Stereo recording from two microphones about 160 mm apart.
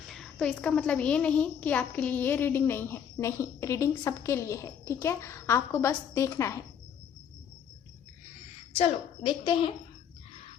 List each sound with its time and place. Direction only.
0.0 s a child's voice: centre (ahead or behind); by 6.7 s 20° left (ahead or behind)
8.7 s a woman's voice: 40° left (ahead or behind)